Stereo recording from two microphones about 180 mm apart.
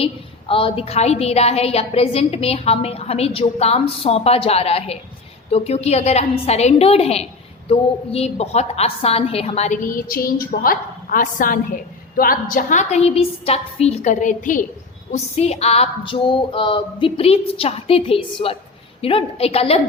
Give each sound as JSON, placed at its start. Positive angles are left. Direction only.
{"t": 0.0, "sound": "a woman's voice", "side_deg": 30}